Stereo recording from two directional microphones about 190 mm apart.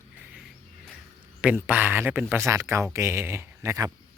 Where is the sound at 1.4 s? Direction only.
10° right (ahead or behind).